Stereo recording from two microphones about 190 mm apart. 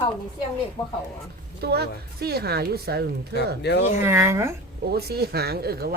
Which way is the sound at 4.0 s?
15° right (ahead or behind).